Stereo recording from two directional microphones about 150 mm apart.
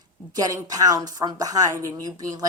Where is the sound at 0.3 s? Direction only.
25° right (ahead or behind).